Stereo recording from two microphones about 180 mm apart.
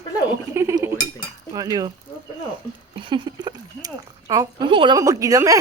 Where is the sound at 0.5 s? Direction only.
15° right (ahead or behind).